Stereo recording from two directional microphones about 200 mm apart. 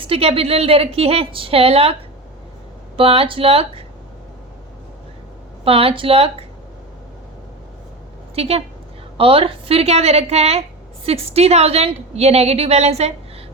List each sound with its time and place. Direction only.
0.1 s a woman's voice: 30° right (ahead or behind)
5.6 s a woman's voice: 30° right (ahead or behind)
8.4 s a woman's voice: 30° right (ahead or behind)